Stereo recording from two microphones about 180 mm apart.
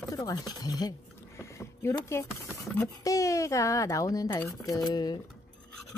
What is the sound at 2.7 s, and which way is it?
Speech, 15° left (ahead or behind).